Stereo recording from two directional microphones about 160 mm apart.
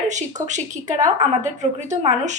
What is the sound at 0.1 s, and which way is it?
A woman's voice, 50° right (ahead or behind).